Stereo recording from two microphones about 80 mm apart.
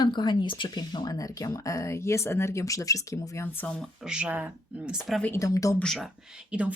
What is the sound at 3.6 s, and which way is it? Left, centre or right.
Speech, centre.